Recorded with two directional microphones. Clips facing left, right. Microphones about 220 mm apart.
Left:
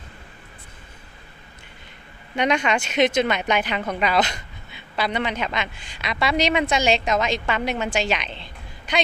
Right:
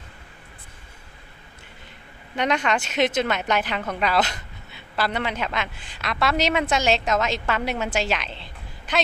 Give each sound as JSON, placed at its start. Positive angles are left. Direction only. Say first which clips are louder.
{"t": 2.3, "sound": "a woman's voice", "louder": "left 2 dB", "side_deg": 0}